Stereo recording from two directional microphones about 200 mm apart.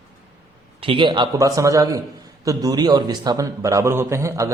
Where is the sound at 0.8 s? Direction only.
25° right (ahead or behind).